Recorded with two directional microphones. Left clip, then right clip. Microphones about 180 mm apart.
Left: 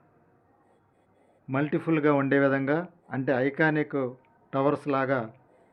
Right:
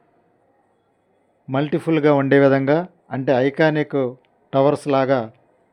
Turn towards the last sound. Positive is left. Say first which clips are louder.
# right 9 dB
turn(degrees=-40)  # may be behind; listen again after turning